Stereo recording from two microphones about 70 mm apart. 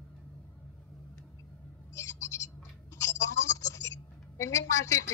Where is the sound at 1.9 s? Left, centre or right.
Left.